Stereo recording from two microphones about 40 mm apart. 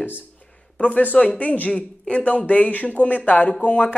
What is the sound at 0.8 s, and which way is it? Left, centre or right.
Speech, left.